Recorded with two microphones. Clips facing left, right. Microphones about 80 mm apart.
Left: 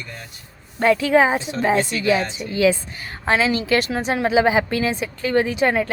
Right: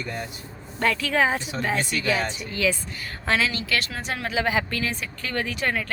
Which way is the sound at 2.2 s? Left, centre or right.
Centre.